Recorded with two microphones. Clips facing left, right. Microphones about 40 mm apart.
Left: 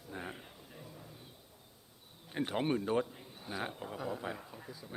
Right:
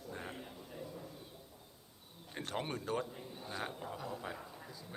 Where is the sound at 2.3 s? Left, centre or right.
Centre.